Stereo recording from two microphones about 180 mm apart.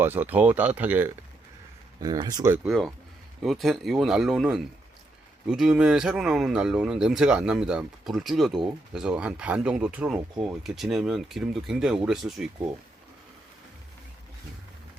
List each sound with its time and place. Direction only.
0.0 s speech: 10° right (ahead or behind)
2.0 s speech: 20° right (ahead or behind)
2.6 s speech: centre (ahead or behind)